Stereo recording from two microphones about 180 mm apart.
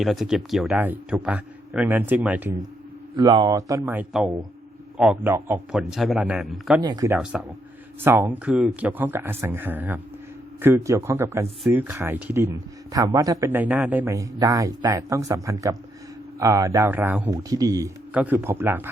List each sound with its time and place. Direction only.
0.0 s speech: centre (ahead or behind)
3.2 s a man's voice: 25° right (ahead or behind); by 6.8 s centre (ahead or behind)
6.8 s speech: 20° right (ahead or behind)
18.1 s speech: 10° right (ahead or behind)